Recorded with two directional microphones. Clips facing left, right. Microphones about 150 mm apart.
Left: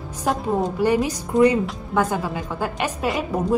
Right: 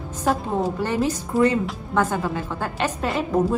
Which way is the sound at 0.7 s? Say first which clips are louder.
Left 3 dB; 15° left (ahead or behind).